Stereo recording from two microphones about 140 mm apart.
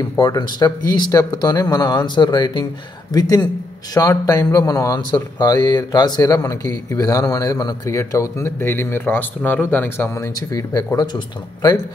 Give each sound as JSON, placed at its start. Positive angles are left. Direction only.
{"t": 0.2, "sound": "a man's voice", "side_deg": 30}